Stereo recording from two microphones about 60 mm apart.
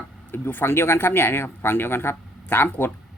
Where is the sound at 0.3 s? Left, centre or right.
Left.